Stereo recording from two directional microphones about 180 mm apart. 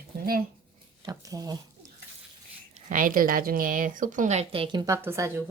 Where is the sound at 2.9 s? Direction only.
50° right (ahead or behind).